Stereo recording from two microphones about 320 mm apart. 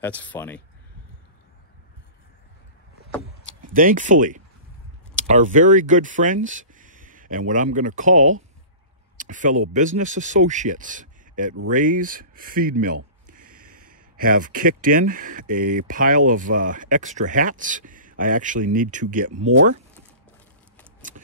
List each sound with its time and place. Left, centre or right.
0.0 s speech: centre
3.6 s speech: right